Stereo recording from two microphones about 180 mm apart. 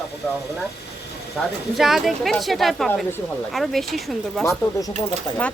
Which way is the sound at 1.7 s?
Centre (ahead or behind).